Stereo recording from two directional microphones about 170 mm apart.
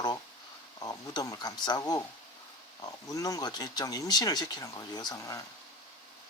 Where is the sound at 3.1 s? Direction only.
20° left (ahead or behind).